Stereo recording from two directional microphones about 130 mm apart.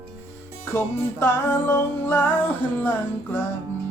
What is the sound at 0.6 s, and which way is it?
Music, 15° left (ahead or behind).